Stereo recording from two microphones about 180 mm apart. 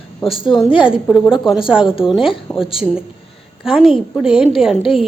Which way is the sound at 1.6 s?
30° left (ahead or behind).